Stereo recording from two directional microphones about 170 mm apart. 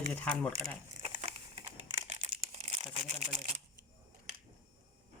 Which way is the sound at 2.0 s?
35° right (ahead or behind).